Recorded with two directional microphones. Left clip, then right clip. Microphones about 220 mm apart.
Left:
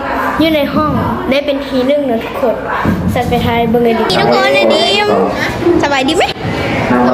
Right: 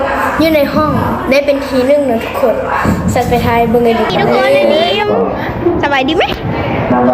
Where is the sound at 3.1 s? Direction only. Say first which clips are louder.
Right 2 dB; 5° left (ahead or behind).